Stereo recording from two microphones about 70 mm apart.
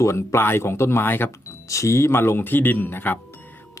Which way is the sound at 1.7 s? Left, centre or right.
Left.